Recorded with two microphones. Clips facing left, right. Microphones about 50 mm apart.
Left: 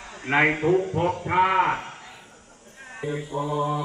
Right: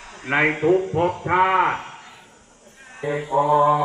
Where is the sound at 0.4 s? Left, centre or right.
Centre.